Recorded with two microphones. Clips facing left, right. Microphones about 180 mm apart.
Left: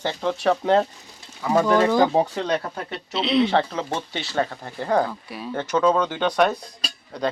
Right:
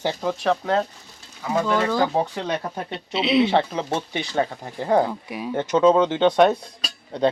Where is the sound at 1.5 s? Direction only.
40° left (ahead or behind).